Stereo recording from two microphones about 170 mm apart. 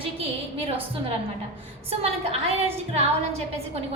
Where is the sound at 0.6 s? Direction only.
35° right (ahead or behind).